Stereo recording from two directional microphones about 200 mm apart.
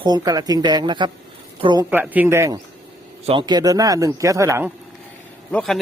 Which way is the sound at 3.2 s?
25° right (ahead or behind).